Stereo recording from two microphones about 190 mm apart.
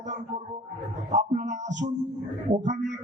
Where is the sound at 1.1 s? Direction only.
40° right (ahead or behind).